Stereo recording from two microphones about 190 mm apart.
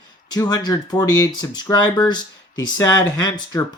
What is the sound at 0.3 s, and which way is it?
Speech, 20° left (ahead or behind).